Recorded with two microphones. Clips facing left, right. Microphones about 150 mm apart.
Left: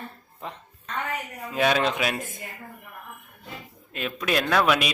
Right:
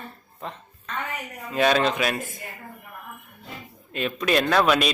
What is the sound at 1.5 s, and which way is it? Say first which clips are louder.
Speech: right 2 dB; 5° left (ahead or behind).